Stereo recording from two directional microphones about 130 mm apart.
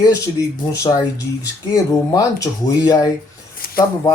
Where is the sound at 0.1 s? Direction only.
25° left (ahead or behind).